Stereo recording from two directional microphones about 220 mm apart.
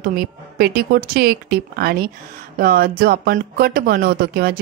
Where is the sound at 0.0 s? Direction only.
45° right (ahead or behind).